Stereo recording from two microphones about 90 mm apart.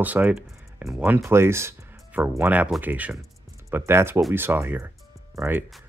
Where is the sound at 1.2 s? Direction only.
30° right (ahead or behind).